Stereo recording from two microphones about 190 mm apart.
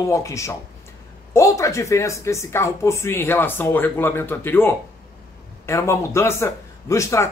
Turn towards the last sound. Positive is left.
turn(degrees=15)  # may be behind; listen again after turning